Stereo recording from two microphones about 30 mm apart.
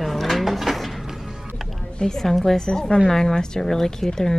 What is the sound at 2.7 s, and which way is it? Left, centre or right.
Speech, left.